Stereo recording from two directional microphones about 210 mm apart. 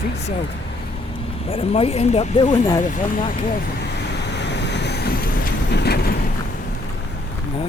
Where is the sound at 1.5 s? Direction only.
25° left (ahead or behind).